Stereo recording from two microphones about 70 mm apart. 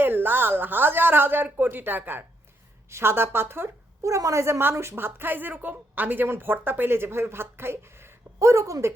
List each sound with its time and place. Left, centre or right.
0.0 s a woman's voice: right
4.0 s a woman's voice: right